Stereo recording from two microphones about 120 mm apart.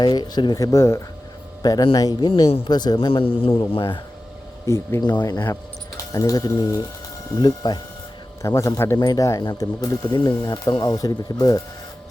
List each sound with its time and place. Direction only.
0.0 s speech: 35° left (ahead or behind)
1.6 s speech: 35° left (ahead or behind)
3.1 s speech: 50° left (ahead or behind)
4.6 s speech: 25° left (ahead or behind)
8.4 s speech: 25° left (ahead or behind)